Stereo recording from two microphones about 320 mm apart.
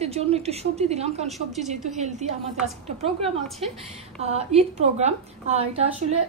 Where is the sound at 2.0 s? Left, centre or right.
Right.